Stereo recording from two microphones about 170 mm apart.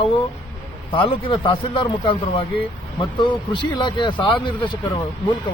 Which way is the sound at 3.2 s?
25° left (ahead or behind).